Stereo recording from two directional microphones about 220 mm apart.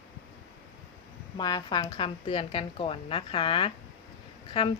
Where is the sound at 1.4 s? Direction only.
20° left (ahead or behind).